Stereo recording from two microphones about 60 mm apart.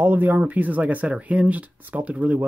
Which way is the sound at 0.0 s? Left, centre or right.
Right.